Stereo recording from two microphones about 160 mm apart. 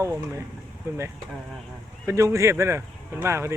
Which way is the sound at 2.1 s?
20° right (ahead or behind).